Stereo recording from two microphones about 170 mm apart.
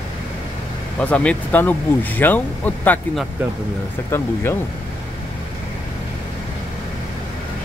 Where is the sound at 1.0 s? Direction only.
10° left (ahead or behind).